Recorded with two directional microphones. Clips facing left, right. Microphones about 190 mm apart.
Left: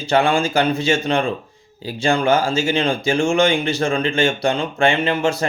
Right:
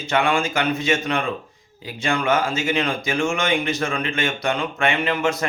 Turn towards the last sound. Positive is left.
turn(degrees=30)  # may be behind; listen again after turning